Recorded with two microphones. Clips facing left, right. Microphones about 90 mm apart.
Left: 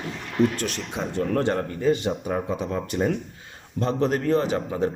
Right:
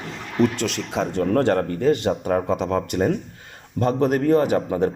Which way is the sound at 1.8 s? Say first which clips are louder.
Right 3 dB; 70° right (ahead or behind).